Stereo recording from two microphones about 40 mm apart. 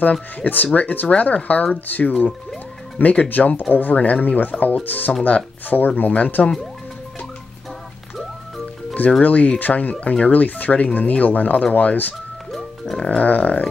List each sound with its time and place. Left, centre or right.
0.5 s speech: left
9.2 s speech: left
12.5 s music: centre
13.2 s speech: left